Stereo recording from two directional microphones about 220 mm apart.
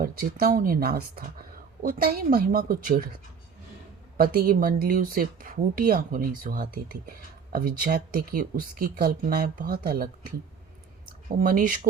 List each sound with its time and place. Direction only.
0.0 s speech: 40° right (ahead or behind)
4.2 s speech: 40° right (ahead or behind)
11.3 s speech: 40° right (ahead or behind)